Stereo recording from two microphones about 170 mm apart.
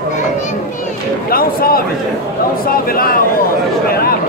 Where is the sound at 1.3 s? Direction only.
60° left (ahead or behind).